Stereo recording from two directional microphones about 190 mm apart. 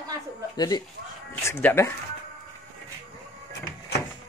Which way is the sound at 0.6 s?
20° left (ahead or behind).